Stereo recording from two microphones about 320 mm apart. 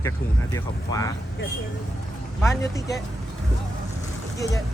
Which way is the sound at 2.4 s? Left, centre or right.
Centre.